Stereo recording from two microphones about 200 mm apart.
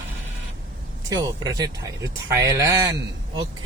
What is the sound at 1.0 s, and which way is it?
Speech, 20° right (ahead or behind).